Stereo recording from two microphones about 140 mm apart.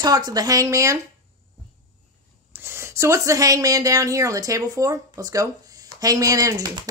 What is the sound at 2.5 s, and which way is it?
Speech, 15° right (ahead or behind).